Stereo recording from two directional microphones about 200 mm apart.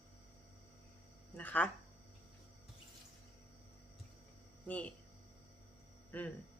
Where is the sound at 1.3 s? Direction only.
10° left (ahead or behind).